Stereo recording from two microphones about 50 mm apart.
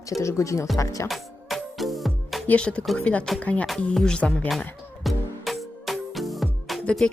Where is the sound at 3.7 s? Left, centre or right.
Centre.